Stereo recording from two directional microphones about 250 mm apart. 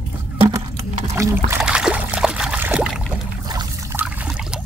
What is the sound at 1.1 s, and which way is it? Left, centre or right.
Trickle, centre.